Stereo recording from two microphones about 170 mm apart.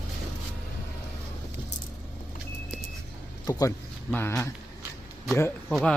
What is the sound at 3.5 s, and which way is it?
Speech, 20° left (ahead or behind).